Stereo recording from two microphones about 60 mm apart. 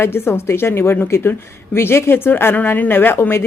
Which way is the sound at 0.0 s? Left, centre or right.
Left.